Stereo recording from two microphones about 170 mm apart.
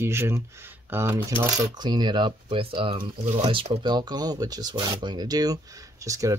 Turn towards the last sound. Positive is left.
turn(degrees=-20)  # may be behind; listen again after turning